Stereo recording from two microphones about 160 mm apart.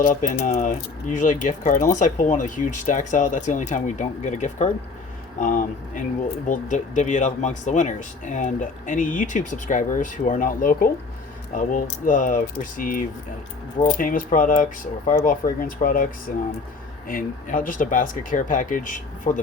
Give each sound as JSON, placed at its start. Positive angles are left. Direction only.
{"t": 0.0, "sound": "speech", "side_deg": 55}
{"t": 14.0, "sound": "speech", "side_deg": 60}